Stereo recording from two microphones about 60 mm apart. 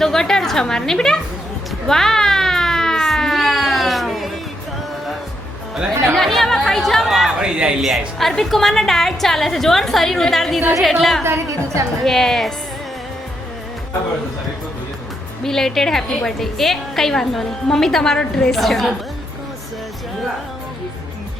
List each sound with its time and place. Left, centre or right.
0.0 s a woman's voice: centre
1.9 s a sound: centre
6.1 s music: centre
7.3 s music: centre
7.8 s a woman's voice: centre
11.2 s a woman's voice: right
12.0 s a woman's voice: centre
15.4 s a woman's voice: centre